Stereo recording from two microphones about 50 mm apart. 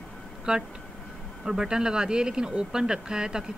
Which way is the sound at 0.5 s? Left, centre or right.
Centre.